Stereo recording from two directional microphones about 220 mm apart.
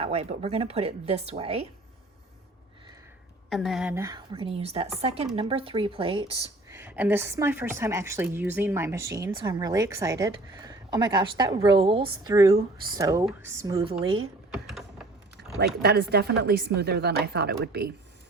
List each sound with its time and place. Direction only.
0.0 s speech: 25° right (ahead or behind)
3.5 s speech: centre (ahead or behind); by 6.3 s 25° right (ahead or behind)
6.7 s speech: 10° right (ahead or behind)
14.5 s mechanisms: centre (ahead or behind)
15.5 s speech: 45° right (ahead or behind)